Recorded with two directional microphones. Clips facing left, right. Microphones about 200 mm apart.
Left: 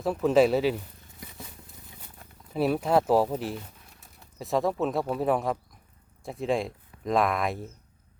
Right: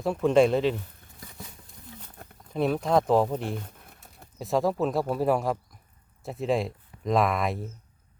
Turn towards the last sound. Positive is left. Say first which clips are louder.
# right 1 dB
turn(degrees=0)  # may be behind; listen again after turning